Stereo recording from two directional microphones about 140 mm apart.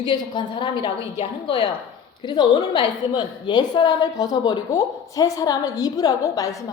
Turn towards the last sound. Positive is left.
turn(degrees=25)  # may be behind; listen again after turning